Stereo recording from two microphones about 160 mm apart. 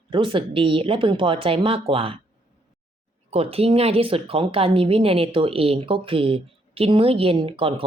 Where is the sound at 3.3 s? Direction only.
40° right (ahead or behind).